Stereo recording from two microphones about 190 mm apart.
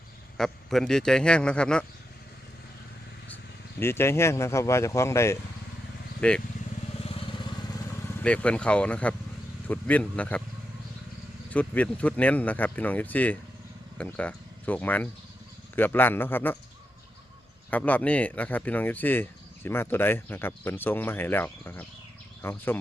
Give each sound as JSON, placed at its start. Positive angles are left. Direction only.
{"t": 0.3, "sound": "a man's voice", "side_deg": 0}
{"t": 3.8, "sound": "speech", "side_deg": 15}
{"t": 7.0, "sound": "vehicle", "side_deg": 30}
{"t": 8.2, "sound": "speech", "side_deg": 5}
{"t": 11.5, "sound": "speech", "side_deg": 5}
{"t": 17.7, "sound": "speech", "side_deg": 10}